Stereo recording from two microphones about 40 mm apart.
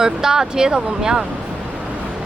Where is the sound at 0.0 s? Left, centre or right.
Centre.